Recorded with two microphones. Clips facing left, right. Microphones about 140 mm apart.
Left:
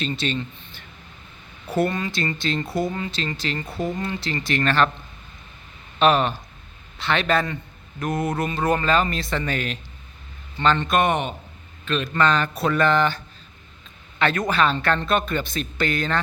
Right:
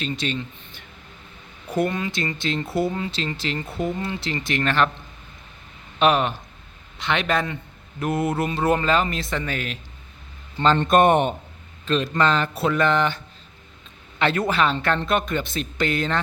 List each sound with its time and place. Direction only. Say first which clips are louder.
0.0 s speech: left 1 dB; 10° right (ahead or behind)
1.7 s speech: left 1 dB; 5° left (ahead or behind)
2.0 s speech: even; 20° right (ahead or behind)
3.7 s speech: right 1 dB; centre (ahead or behind)
4.0 s speech: even; 20° right (ahead or behind)
6.0 s speech: left 1 dB; 15° right (ahead or behind)
10.8 s a man's voice: right 4 dB; 50° right (ahead or behind)
11.9 s speech: right 1 dB; 30° right (ahead or behind)